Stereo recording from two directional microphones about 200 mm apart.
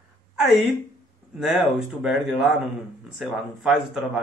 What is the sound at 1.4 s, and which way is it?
A man's voice, 5° right (ahead or behind).